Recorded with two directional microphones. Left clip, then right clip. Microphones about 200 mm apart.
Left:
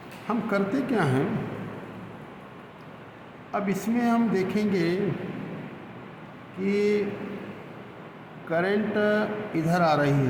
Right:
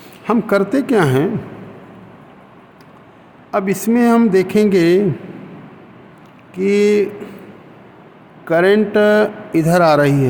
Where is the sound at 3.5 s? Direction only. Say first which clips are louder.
Right 11 dB; 55° right (ahead or behind).